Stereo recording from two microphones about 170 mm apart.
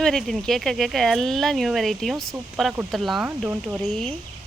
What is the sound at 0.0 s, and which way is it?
Speech, centre (ahead or behind).